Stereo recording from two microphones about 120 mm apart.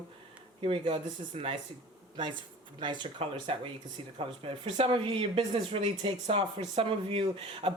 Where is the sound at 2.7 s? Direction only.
40° right (ahead or behind).